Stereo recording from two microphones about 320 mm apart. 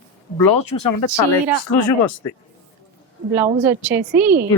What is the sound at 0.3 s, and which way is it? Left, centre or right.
Speech, left.